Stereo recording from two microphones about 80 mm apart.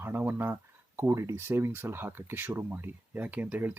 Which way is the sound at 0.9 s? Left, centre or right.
Right.